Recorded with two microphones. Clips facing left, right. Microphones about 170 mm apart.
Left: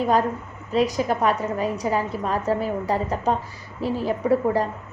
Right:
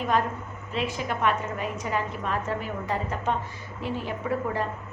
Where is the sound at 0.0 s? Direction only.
35° left (ahead or behind).